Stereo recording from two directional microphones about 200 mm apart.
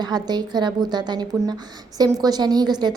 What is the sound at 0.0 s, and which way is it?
A woman's voice, 20° right (ahead or behind).